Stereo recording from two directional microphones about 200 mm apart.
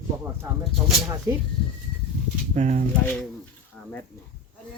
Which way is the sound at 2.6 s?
35° right (ahead or behind).